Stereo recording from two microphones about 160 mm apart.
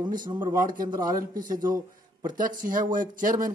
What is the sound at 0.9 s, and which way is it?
A man's voice, 25° right (ahead or behind).